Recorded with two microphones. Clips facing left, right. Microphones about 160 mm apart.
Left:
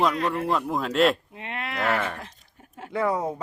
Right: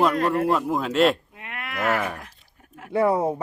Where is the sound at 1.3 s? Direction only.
25° left (ahead or behind).